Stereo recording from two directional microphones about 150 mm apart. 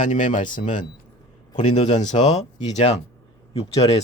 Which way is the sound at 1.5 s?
50° left (ahead or behind).